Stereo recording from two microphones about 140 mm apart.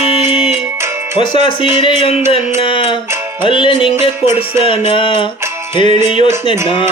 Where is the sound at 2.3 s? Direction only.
40° left (ahead or behind).